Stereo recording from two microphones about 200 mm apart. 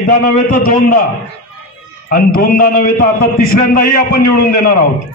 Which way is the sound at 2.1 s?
45° left (ahead or behind).